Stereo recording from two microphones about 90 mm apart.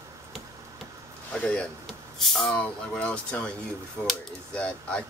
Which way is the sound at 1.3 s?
15° left (ahead or behind).